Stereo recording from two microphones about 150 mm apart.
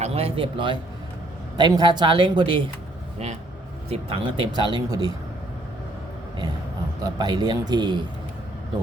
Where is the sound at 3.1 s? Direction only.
45° right (ahead or behind).